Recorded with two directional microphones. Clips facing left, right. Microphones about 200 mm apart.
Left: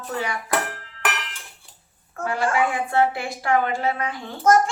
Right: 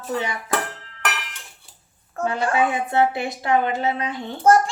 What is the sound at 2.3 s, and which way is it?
A woman's voice, 20° right (ahead or behind).